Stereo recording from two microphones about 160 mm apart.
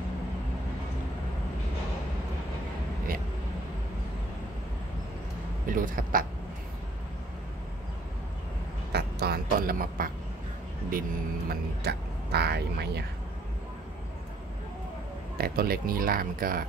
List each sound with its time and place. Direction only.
5.7 s speech: 60° right (ahead or behind)
8.9 s speech: 75° right (ahead or behind)
15.3 s speech: 75° right (ahead or behind)